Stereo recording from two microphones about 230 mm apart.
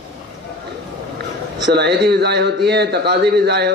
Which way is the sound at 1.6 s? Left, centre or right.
Right.